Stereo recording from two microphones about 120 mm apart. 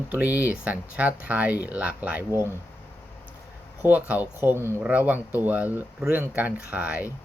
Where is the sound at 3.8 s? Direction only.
15° right (ahead or behind).